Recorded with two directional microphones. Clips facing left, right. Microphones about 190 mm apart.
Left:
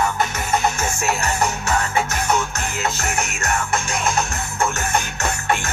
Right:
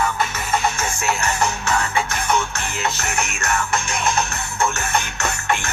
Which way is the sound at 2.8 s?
35° left (ahead or behind).